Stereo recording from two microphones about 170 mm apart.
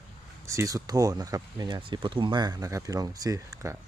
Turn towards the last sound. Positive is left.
turn(degrees=-20)  # may be behind; listen again after turning